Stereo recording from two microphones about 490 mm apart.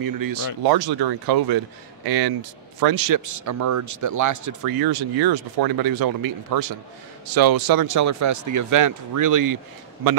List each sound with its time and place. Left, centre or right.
0.0 s speech: right